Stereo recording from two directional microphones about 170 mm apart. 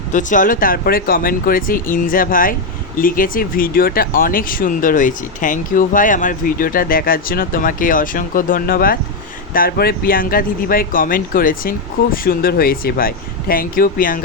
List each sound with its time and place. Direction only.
0.1 s speech: 50° left (ahead or behind)